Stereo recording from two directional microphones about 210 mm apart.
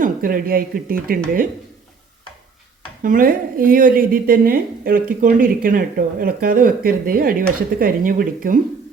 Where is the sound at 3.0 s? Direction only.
40° right (ahead or behind).